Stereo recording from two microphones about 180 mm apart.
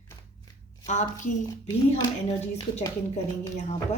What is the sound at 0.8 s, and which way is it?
Speech, 45° left (ahead or behind).